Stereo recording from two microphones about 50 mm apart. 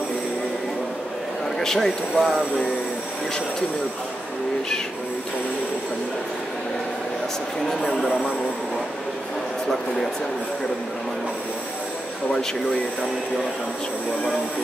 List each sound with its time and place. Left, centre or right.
1.6 s speech: centre